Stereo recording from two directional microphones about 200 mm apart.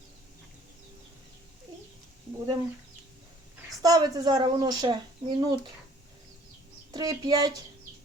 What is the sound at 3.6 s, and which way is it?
Speech, 20° right (ahead or behind).